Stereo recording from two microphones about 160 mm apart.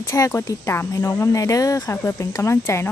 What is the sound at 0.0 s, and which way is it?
Speech, 15° left (ahead or behind).